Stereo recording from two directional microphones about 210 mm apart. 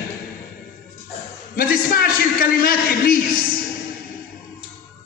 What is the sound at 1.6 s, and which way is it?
A man's voice, 45° left (ahead or behind).